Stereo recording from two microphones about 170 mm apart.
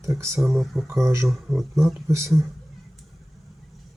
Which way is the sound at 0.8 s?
15° right (ahead or behind).